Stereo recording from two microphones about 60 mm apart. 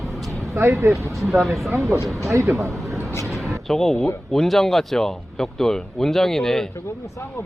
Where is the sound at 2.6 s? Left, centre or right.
Right.